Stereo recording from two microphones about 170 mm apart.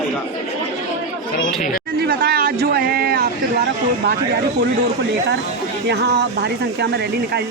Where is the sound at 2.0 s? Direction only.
60° right (ahead or behind).